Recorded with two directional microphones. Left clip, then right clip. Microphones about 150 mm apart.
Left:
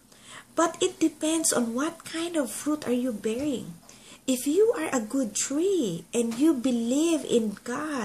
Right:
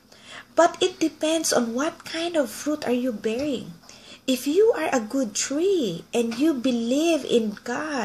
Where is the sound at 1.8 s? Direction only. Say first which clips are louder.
Right 4 dB; 45° left (ahead or behind).